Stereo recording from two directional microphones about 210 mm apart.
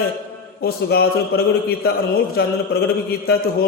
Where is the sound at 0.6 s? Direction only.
50° left (ahead or behind).